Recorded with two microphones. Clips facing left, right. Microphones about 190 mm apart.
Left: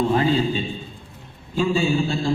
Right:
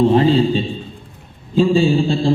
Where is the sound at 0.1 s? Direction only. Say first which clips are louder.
Right 6 dB; 30° right (ahead or behind).